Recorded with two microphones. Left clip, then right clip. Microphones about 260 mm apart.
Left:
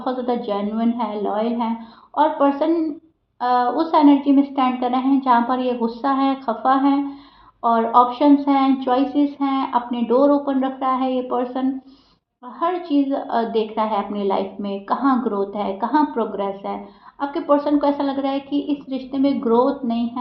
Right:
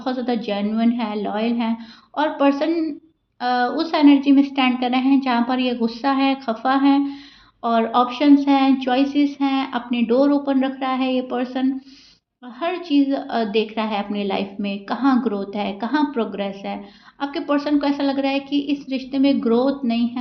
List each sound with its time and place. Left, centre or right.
0.0 s a woman's voice: right